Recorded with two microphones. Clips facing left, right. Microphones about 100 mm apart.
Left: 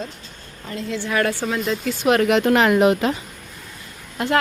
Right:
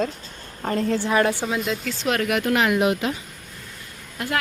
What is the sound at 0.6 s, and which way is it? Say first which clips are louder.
Speech: right 5 dB; 55° right (ahead or behind).